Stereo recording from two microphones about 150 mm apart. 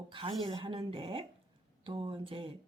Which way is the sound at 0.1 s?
35° right (ahead or behind).